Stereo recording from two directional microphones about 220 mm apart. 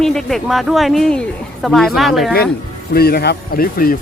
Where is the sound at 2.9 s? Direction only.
45° left (ahead or behind).